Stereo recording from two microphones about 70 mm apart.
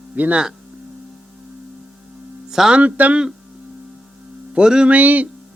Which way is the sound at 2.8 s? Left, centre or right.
Centre.